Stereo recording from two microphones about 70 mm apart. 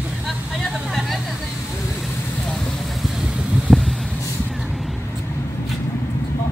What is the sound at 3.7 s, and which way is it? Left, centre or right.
Vehicle, centre.